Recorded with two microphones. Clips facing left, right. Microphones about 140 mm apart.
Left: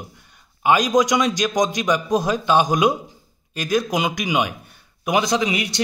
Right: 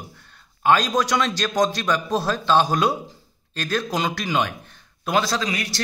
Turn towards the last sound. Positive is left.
turn(degrees=20)  # may be behind; listen again after turning